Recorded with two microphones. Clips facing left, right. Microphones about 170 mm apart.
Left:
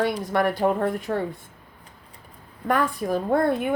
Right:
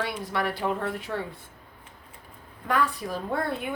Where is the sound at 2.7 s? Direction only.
50° left (ahead or behind).